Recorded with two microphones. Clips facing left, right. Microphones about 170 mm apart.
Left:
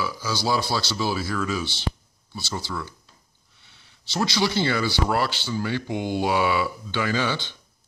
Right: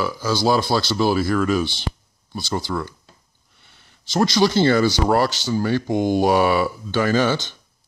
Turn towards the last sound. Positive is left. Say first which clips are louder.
# right 7 dB
turn(degrees=-45)  # may be behind; listen again after turning